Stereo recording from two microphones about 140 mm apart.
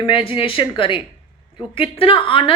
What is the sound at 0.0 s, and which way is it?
A woman's voice, 40° left (ahead or behind).